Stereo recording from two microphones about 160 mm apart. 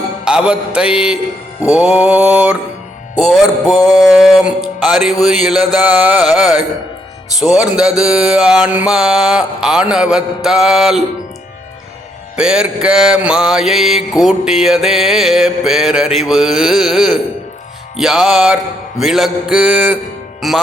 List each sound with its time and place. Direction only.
0.3 s mantra: 5° right (ahead or behind)
1.7 s music: 10° right (ahead or behind)
3.2 s mantra: centre (ahead or behind)
3.8 s mantra: 25° left (ahead or behind)
4.0 s mantra: centre (ahead or behind)
5.2 s music: centre (ahead or behind)
7.3 s mantra: 5° right (ahead or behind)
12.4 s mantra: 5° right (ahead or behind)